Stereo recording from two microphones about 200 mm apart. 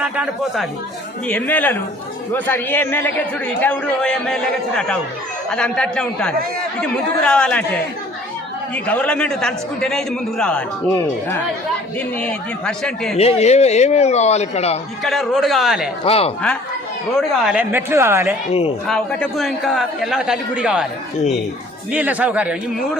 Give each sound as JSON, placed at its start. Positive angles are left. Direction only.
{"t": 0.0, "sound": "a man's voice", "side_deg": -5}
{"t": 1.3, "sound": "a man's voice", "side_deg": 10}
{"t": 13.1, "sound": "a man's voice", "side_deg": 30}
{"t": 15.0, "sound": "a man's voice", "side_deg": 0}
{"t": 16.0, "sound": "speech", "side_deg": 30}
{"t": 17.4, "sound": "a woman's voice", "side_deg": -5}
{"t": 18.9, "sound": "a man's voice", "side_deg": 5}
{"t": 21.9, "sound": "a woman's voice", "side_deg": -10}